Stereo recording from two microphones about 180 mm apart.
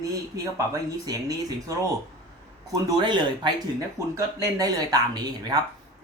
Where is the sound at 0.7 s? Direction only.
20° right (ahead or behind).